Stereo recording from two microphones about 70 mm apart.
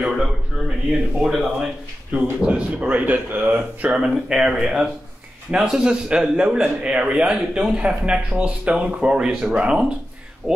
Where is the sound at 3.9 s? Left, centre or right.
Centre.